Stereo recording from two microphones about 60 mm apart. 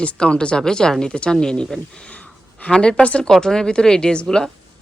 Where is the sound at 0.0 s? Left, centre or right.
Centre.